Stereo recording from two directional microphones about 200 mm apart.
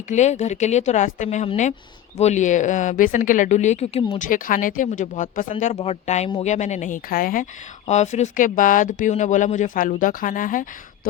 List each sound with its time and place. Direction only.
0.1 s speech: 35° left (ahead or behind)